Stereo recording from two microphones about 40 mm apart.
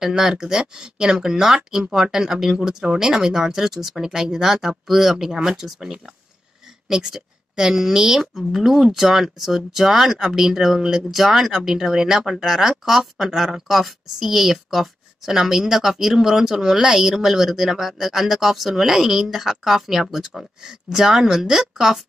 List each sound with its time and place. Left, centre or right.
0.0 s speech: centre
6.9 s speech: centre